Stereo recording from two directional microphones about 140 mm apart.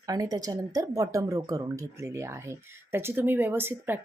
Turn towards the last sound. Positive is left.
turn(degrees=-15)  # may be behind; listen again after turning